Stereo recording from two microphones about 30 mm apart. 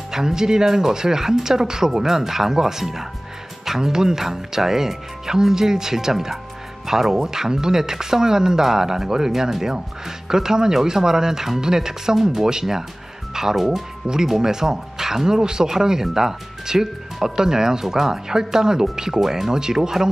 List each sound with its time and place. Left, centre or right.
0.1 s speech: centre
3.6 s music: centre
3.9 s speech: centre
6.9 s speech: centre
7.2 s speech: centre
13.3 s speech: centre
19.5 s speech: right